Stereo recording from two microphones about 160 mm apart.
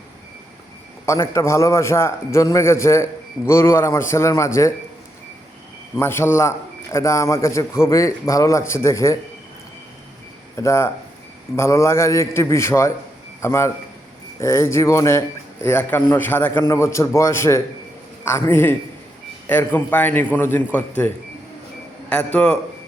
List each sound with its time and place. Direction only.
1.0 s a man's voice: 20° left (ahead or behind)
6.0 s a man's voice: 15° left (ahead or behind)
10.6 s a man's voice: 15° left (ahead or behind)
22.1 s a man's voice: 5° left (ahead or behind)